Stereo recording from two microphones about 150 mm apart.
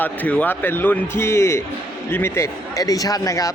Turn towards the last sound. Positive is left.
turn(degrees=20)  # may be behind; listen again after turning